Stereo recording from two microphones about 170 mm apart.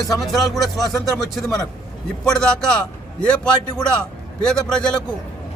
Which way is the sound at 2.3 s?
5° left (ahead or behind).